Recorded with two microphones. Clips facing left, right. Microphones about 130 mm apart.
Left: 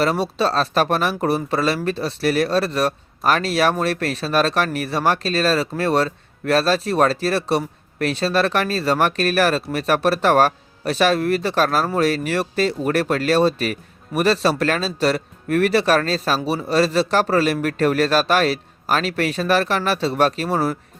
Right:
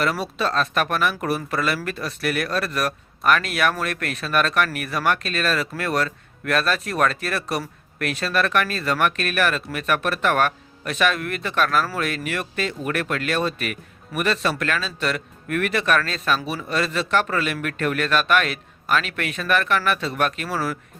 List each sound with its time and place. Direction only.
0.0 s speech: 30° left (ahead or behind)